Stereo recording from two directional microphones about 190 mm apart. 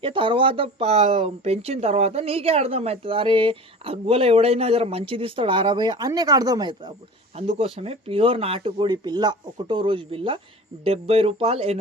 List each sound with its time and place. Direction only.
0.0 s speech: 25° right (ahead or behind)